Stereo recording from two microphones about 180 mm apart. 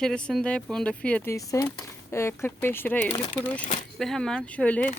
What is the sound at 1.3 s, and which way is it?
Speech, 15° left (ahead or behind).